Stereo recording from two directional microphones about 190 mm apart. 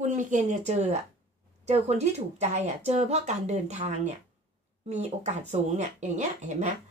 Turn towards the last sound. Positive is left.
turn(degrees=-40)  # may be behind; listen again after turning